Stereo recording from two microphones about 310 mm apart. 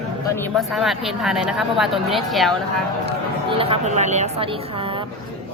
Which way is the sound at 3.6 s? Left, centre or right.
Centre.